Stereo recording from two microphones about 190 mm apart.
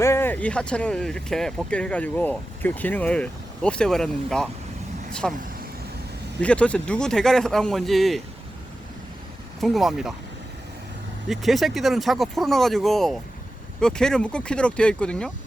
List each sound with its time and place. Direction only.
0.0 s speech: 10° left (ahead or behind)
6.4 s speech: 5° left (ahead or behind)
9.6 s speech: centre (ahead or behind)
11.3 s speech: centre (ahead or behind)